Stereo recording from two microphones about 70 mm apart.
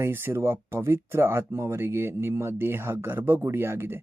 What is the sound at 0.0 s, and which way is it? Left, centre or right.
Speech, right.